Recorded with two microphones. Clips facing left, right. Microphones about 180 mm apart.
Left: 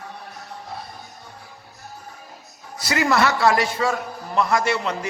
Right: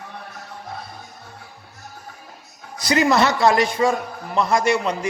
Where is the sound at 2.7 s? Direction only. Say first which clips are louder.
Right 3 dB; 20° right (ahead or behind).